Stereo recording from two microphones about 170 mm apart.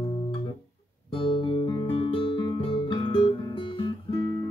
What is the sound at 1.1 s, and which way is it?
Guitar, 30° left (ahead or behind).